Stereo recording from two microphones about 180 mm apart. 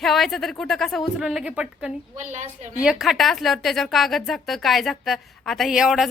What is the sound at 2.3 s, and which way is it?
Speech, 40° right (ahead or behind).